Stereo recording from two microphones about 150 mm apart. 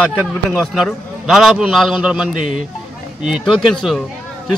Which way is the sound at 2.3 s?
55° right (ahead or behind).